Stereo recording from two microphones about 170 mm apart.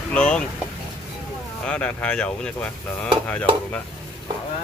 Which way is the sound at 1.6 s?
5° left (ahead or behind).